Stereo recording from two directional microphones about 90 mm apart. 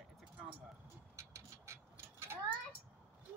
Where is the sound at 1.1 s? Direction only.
30° right (ahead or behind).